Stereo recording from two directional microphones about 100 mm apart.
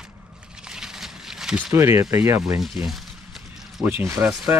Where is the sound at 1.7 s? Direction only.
30° right (ahead or behind).